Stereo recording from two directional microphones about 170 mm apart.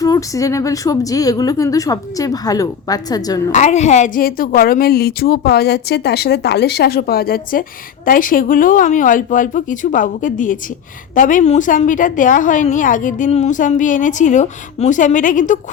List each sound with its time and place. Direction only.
0.0 s a woman's voice: 20° left (ahead or behind)
3.5 s a woman's voice: 45° left (ahead or behind)